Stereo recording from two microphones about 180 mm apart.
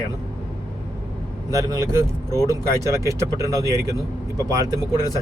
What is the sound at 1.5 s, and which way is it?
Speech, 20° right (ahead or behind).